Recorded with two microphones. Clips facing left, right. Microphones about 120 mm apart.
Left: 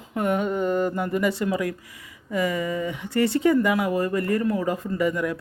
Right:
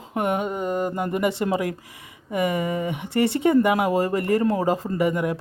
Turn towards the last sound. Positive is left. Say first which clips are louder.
# right 1 dB
turn(degrees=-25)  # may be behind; listen again after turning